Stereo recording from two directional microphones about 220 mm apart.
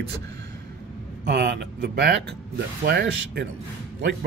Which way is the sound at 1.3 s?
50° right (ahead or behind).